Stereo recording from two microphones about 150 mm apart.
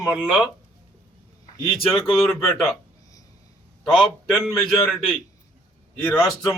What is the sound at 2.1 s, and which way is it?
Speech, centre (ahead or behind).